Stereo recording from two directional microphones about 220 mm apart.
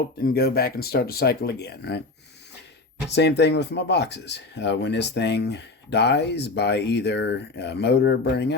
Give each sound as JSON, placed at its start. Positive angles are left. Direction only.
{"t": 0.2, "sound": "speech", "side_deg": 45}
{"t": 3.2, "sound": "speech", "side_deg": 50}